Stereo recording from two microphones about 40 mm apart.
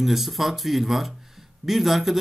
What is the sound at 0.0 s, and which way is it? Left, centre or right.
A man's voice, centre.